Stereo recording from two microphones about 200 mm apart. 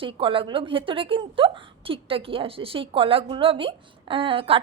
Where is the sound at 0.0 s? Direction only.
25° right (ahead or behind).